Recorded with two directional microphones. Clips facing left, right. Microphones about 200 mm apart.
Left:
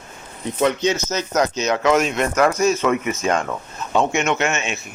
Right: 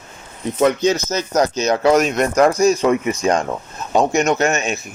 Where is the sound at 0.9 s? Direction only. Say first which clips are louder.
Right 3 dB; 40° right (ahead or behind).